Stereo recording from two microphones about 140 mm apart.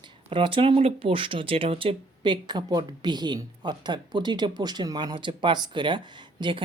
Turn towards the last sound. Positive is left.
turn(degrees=-35)  # may be behind; listen again after turning